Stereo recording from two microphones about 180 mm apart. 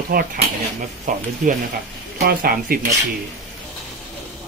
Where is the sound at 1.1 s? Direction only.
45° right (ahead or behind).